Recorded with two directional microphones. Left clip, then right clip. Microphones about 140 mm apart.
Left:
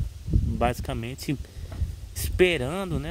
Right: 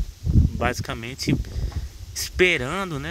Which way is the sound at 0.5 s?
15° left (ahead or behind).